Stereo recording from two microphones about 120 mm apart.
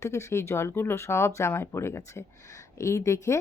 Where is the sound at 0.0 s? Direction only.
25° left (ahead or behind).